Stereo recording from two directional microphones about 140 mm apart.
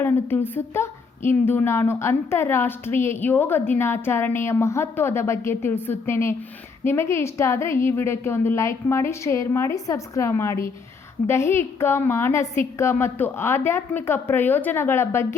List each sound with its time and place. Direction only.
0.0 s a woman's voice: 15° left (ahead or behind)